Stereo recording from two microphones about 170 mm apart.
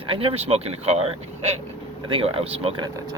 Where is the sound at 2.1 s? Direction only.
35° right (ahead or behind).